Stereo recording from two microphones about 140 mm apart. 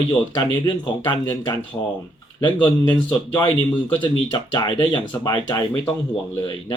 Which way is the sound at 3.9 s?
35° left (ahead or behind).